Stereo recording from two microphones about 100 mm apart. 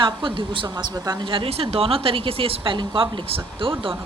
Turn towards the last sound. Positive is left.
turn(degrees=-60)  # may be behind; listen again after turning